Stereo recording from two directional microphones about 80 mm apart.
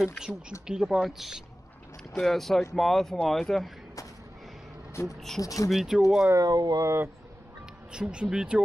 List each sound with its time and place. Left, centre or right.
0.0 s speech: centre
5.0 s speech: centre
5.4 s speech: left
5.7 s speech: centre
6.3 s speech: right
6.8 s speech: right
7.9 s speech: centre